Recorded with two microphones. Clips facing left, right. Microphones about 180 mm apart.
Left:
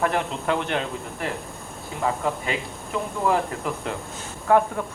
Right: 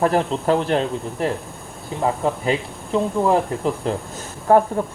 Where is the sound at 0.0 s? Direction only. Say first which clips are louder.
Right 6 dB; 35° right (ahead or behind).